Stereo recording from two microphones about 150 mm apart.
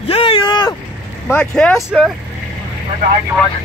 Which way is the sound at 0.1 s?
35° left (ahead or behind).